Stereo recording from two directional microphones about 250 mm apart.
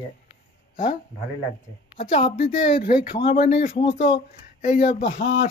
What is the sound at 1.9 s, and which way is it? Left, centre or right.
Speech, left.